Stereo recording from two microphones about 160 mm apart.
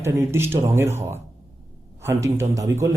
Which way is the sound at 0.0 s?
15° right (ahead or behind).